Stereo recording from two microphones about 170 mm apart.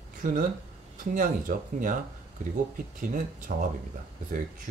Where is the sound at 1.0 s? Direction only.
50° right (ahead or behind).